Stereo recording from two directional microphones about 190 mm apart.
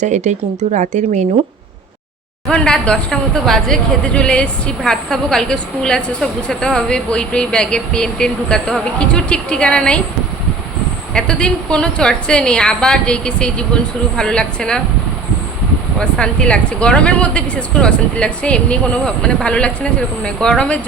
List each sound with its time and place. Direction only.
0.0 s speech: 40° right (ahead or behind)
2.5 s speech: 5° left (ahead or behind)
11.1 s speech: 5° left (ahead or behind)
16.0 s speech: 5° left (ahead or behind)